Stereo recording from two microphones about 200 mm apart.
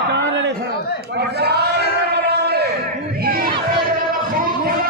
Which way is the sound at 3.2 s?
45° right (ahead or behind).